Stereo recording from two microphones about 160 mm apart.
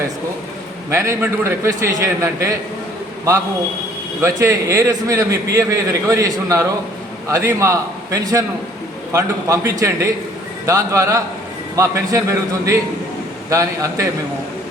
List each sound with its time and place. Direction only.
0.9 s a man's voice: 15° right (ahead or behind)
4.2 s a man's voice: 20° right (ahead or behind)